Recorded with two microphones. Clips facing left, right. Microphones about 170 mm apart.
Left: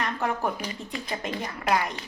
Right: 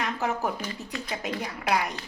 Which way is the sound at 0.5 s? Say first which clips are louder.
Even; 15° left (ahead or behind).